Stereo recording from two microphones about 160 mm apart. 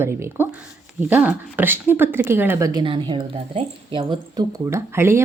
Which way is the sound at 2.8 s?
30° right (ahead or behind).